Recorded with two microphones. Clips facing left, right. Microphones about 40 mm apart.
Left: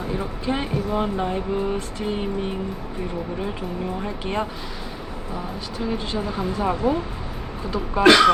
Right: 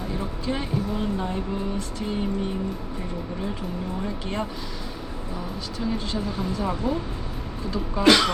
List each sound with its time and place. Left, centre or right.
0.1 s speech: left
4.0 s speech: left
5.8 s speech: centre